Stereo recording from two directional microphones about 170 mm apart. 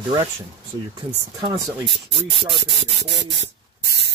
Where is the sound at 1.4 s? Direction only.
20° right (ahead or behind).